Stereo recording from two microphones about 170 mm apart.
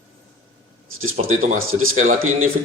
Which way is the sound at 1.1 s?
50° right (ahead or behind).